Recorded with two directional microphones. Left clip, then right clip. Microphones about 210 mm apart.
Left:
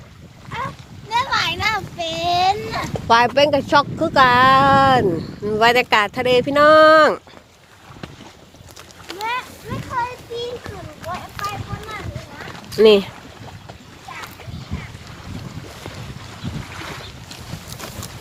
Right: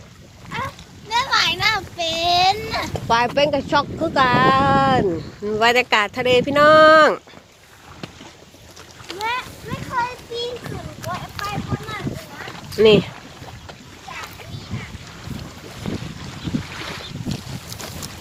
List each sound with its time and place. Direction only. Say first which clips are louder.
0.5 s splash: even; 5° left (ahead or behind)
1.1 s a sound: right 1 dB; 5° left (ahead or behind); by 2.9 s 15° right (ahead or behind)
3.1 s speech: left 4 dB; 25° left (ahead or behind)
5.5 s speech: left 2 dB; 10° left (ahead or behind)
9.2 s a sound: even; 55° right (ahead or behind)
11.0 s boat: even; 50° right (ahead or behind)
11.4 s boat: left 2 dB; centre (ahead or behind)
12.7 s speech: left 2 dB; 15° left (ahead or behind)
16.6 s boat: right 2 dB; 50° left (ahead or behind)